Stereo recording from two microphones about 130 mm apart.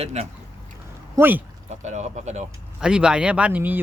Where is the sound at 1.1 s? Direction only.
15° right (ahead or behind).